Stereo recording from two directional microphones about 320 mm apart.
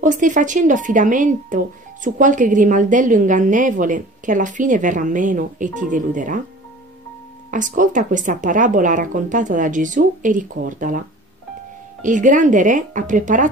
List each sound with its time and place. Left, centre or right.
0.0 s a woman's voice: right
7.5 s a woman's voice: right